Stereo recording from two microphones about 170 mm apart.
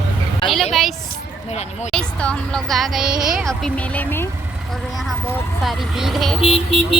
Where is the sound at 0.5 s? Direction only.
Centre (ahead or behind).